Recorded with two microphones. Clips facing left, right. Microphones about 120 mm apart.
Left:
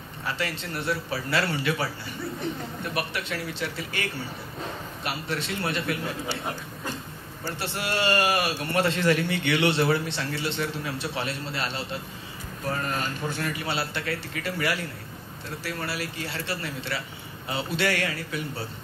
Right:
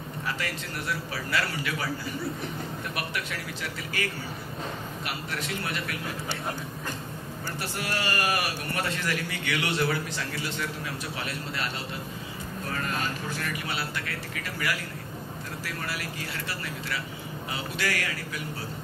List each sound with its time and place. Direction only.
0.3 s a man's voice: 30° left (ahead or behind)
3.0 s a man's voice: 30° left (ahead or behind)
7.4 s a man's voice: 25° left (ahead or behind)
12.8 s a man's voice: 35° left (ahead or behind)